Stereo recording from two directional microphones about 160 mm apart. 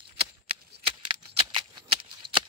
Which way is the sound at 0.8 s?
35° right (ahead or behind).